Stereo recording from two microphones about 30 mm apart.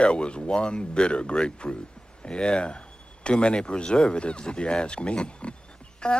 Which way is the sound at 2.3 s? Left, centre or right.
Left.